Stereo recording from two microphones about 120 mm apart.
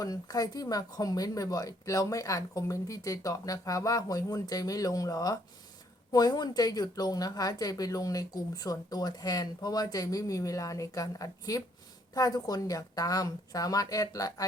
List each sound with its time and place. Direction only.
0.0 s speech: 30° left (ahead or behind)